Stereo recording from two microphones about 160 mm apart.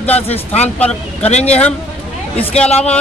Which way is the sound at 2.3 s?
5° left (ahead or behind).